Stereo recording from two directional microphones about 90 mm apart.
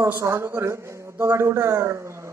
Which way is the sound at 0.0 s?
30° right (ahead or behind).